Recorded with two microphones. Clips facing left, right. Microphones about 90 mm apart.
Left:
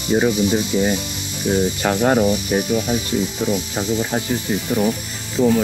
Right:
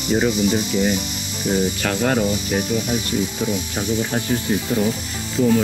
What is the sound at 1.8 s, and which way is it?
Speech, 20° left (ahead or behind).